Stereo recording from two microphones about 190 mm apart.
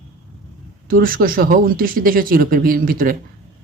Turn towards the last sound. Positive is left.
turn(degrees=-50)  # may be behind; listen again after turning